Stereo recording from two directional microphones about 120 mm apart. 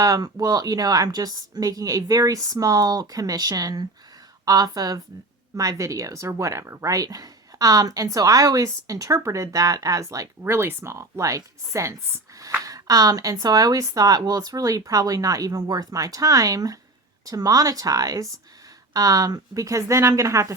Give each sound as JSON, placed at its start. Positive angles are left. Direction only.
{"t": 0.0, "sound": "a woman's voice", "side_deg": -30}